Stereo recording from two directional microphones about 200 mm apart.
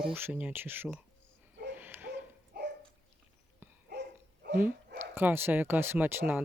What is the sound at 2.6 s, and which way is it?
Dog, 55° right (ahead or behind).